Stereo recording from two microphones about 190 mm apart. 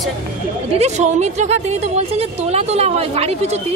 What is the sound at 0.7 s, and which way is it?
A woman's voice, 35° right (ahead or behind).